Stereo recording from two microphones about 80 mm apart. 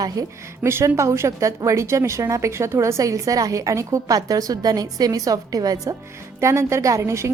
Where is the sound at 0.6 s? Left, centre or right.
Right.